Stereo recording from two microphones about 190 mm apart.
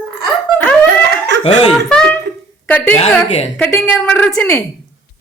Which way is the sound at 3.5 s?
5° left (ahead or behind).